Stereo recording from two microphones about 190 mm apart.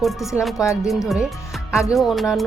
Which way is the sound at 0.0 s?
Centre (ahead or behind).